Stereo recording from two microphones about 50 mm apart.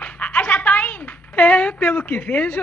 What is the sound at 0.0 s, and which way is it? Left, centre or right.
A child's voice, left.